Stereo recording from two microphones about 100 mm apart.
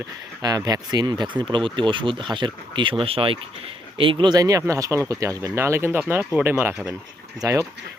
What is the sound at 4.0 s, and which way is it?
Speech, 55° right (ahead or behind).